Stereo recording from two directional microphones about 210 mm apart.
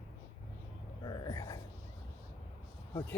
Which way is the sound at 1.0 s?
20° left (ahead or behind).